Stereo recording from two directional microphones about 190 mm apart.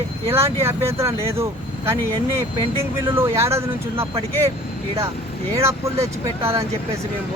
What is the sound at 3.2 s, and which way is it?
Speech, 15° right (ahead or behind).